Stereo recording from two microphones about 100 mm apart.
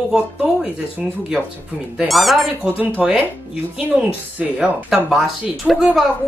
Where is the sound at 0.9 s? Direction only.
15° right (ahead or behind).